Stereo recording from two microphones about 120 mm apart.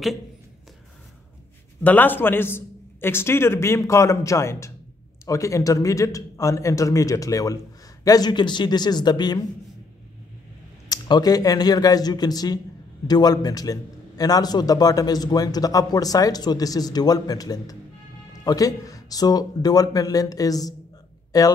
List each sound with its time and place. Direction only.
1.8 s a man's voice: 15° left (ahead or behind); by 9.5 s 35° left (ahead or behind)
10.9 s a man's voice: 35° left (ahead or behind)